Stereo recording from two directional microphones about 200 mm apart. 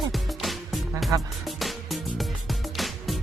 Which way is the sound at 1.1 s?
15° right (ahead or behind).